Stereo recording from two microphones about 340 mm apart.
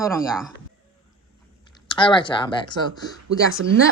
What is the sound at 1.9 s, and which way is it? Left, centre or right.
Speech, centre.